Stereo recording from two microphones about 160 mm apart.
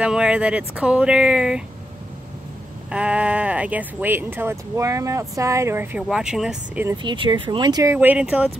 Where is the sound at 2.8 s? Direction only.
5° right (ahead or behind).